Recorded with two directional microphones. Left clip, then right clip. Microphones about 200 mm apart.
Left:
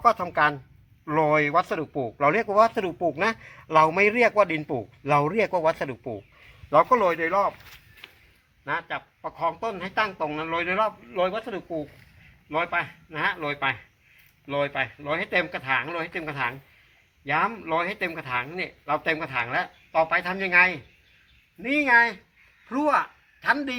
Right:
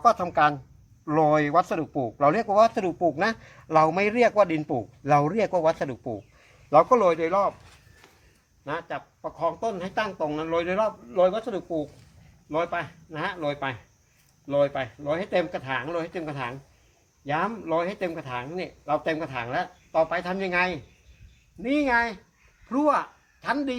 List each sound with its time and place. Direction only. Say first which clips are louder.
0.2 s a man's voice: right 1 dB; 15° left (ahead or behind)
8.6 s speech: left 2 dB; centre (ahead or behind)